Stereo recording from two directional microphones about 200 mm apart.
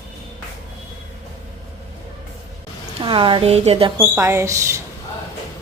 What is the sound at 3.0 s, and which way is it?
Speech, 25° right (ahead or behind).